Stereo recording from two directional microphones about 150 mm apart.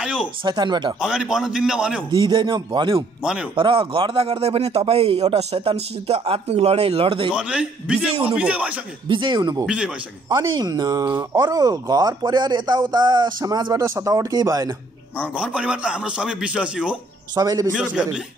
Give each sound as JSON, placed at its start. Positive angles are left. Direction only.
{"t": 0.0, "sound": "speech", "side_deg": -5}
{"t": 0.5, "sound": "a man's voice", "side_deg": -30}
{"t": 1.0, "sound": "a man's voice", "side_deg": -5}
{"t": 2.0, "sound": "a man's voice", "side_deg": -30}
{"t": 7.3, "sound": "a man's voice", "side_deg": -5}
{"t": 9.1, "sound": "speech", "side_deg": -30}
{"t": 15.1, "sound": "a man's voice", "side_deg": -5}
{"t": 17.4, "sound": "speech", "side_deg": -25}